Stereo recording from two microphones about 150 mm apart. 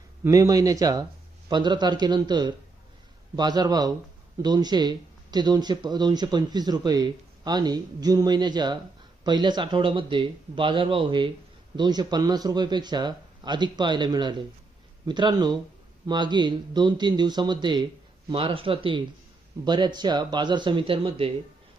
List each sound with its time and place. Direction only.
0.3 s speech: 25° right (ahead or behind)